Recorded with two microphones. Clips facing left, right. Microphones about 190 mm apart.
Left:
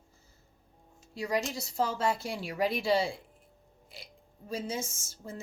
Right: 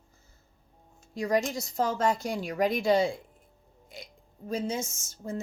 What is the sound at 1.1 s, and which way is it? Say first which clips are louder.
A woman's voice: right 5 dB; 45° right (ahead or behind).